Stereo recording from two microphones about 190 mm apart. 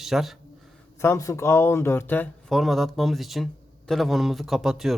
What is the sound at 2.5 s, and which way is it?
A man's voice, centre (ahead or behind).